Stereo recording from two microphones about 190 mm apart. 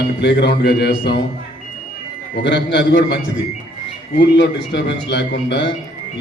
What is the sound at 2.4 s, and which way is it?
Speech, 70° left (ahead or behind).